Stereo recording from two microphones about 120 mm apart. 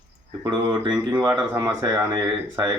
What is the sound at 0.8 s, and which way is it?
Speech, 35° right (ahead or behind).